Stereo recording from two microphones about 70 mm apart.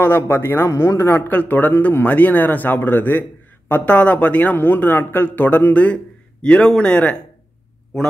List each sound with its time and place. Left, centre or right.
0.0 s speech: left
1.3 s speech: left